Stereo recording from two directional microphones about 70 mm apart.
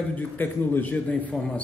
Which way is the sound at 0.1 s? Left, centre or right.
Left.